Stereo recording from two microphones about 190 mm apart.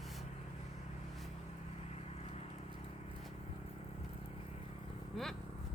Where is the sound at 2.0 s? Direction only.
35° left (ahead or behind).